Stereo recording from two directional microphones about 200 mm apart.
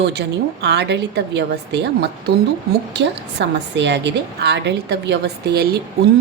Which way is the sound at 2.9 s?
60° right (ahead or behind).